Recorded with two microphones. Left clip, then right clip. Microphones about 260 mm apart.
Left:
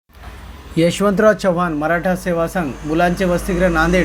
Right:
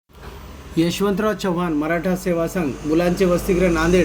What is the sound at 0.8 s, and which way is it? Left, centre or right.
Speech, centre.